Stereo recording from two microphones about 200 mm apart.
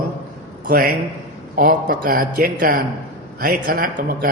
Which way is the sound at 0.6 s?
45° right (ahead or behind).